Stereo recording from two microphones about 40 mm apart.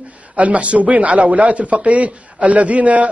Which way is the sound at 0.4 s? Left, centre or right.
Right.